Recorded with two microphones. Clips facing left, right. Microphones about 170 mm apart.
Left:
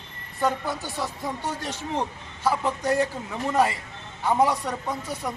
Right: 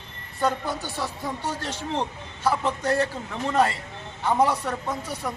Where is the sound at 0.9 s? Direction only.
15° left (ahead or behind).